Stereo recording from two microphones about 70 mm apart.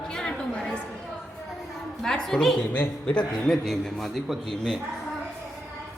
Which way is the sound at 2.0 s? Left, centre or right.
Centre.